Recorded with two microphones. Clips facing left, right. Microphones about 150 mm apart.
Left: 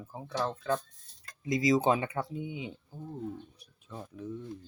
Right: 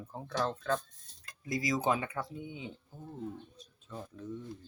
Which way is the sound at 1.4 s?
20° left (ahead or behind).